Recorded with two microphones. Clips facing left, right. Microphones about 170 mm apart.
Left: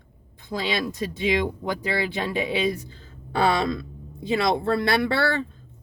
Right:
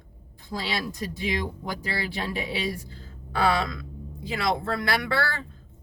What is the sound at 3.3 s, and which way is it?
Speech, 25° left (ahead or behind).